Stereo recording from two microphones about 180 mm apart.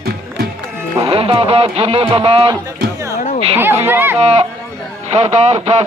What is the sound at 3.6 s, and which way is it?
Speech, 10° right (ahead or behind).